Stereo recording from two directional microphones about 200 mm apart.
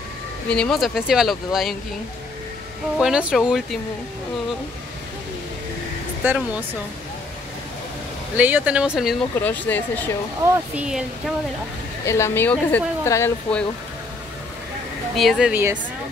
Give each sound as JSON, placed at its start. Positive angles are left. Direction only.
{"t": 0.5, "sound": "speech", "side_deg": 5}
{"t": 3.0, "sound": "speech", "side_deg": -5}
{"t": 6.2, "sound": "speech", "side_deg": -5}
{"t": 8.4, "sound": "speech", "side_deg": -10}
{"t": 9.4, "sound": "speech", "side_deg": 10}
{"t": 10.4, "sound": "speech", "side_deg": -15}
{"t": 10.8, "sound": "speech", "side_deg": -5}
{"t": 12.1, "sound": "speech", "side_deg": 10}
{"t": 15.1, "sound": "speech", "side_deg": 0}